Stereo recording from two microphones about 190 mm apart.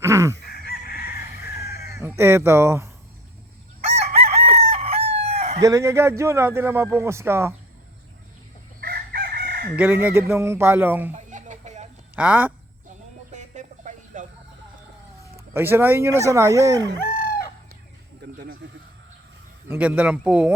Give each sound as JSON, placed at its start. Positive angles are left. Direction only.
{"t": 0.0, "sound": "chicken", "side_deg": -15}
{"t": 0.4, "sound": "chicken", "side_deg": 55}
{"t": 2.0, "sound": "speech", "side_deg": -15}
{"t": 3.8, "sound": "chicken", "side_deg": -35}
{"t": 5.6, "sound": "a man's voice", "side_deg": -15}
{"t": 8.8, "sound": "chicken", "side_deg": -50}
{"t": 9.7, "sound": "a man's voice", "side_deg": -10}
{"t": 11.1, "sound": "a sound", "side_deg": -40}
{"t": 12.1, "sound": "speech", "side_deg": -5}
{"t": 13.3, "sound": "a sound", "side_deg": -40}
{"t": 15.5, "sound": "a man's voice", "side_deg": -10}
{"t": 17.0, "sound": "chicken", "side_deg": 50}
{"t": 18.2, "sound": "a sound", "side_deg": -55}
{"t": 19.6, "sound": "a man's voice", "side_deg": -10}